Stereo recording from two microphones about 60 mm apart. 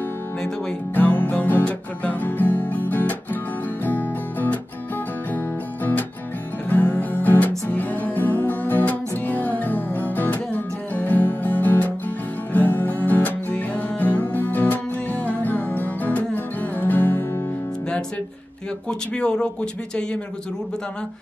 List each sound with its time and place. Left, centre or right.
0.9 s music: left
1.6 s guitar: left
3.8 s music: left
6.7 s music: left
18.9 s speech: centre